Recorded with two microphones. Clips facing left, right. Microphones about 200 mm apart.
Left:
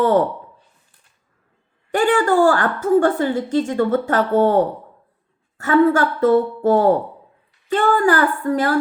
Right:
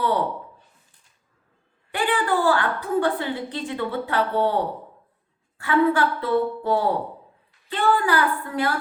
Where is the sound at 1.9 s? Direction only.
45° left (ahead or behind).